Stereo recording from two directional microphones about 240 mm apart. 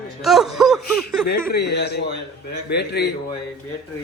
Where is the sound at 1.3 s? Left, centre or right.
Left.